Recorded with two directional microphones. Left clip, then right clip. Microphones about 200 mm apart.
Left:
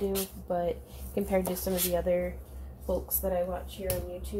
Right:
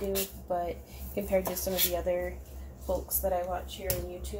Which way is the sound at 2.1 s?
45° left (ahead or behind).